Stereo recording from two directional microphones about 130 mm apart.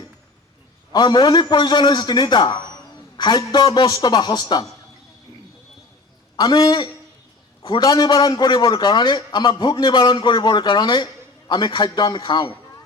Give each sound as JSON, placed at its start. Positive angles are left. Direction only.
{"t": 0.9, "sound": "a man's voice", "side_deg": 35}
{"t": 6.3, "sound": "a man's voice", "side_deg": 35}